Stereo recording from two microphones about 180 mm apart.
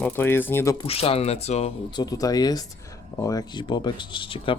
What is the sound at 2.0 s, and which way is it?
Speech, 20° left (ahead or behind).